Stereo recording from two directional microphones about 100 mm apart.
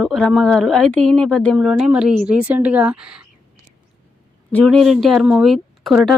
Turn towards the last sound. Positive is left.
turn(degrees=0)  # may be behind; listen again after turning